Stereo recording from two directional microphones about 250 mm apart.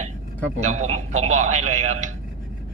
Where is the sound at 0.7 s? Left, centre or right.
Right.